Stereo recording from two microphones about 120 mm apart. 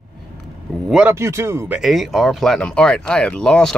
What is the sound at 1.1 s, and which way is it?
Speech, 20° right (ahead or behind).